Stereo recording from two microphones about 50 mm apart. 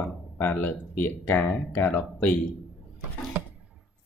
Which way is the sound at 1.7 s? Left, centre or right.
Left.